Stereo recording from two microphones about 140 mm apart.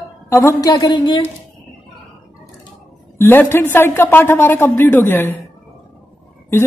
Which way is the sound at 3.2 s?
15° left (ahead or behind).